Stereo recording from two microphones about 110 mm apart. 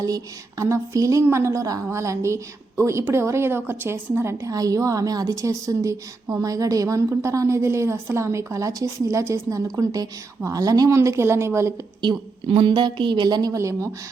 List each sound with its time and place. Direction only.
0.6 s a woman's voice: 30° right (ahead or behind)
12.0 s a woman's voice: 50° right (ahead or behind); by 13.9 s 30° right (ahead or behind)